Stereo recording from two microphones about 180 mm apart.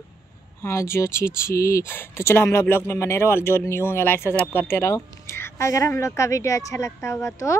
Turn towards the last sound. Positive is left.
turn(degrees=15)  # may be behind; listen again after turning